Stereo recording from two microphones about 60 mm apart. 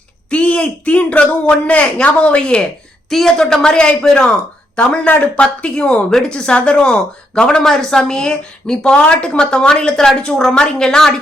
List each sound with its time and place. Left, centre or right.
0.3 s speech: centre
3.1 s speech: centre